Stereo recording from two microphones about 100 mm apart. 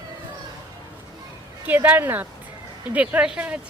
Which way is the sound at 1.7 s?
20° right (ahead or behind).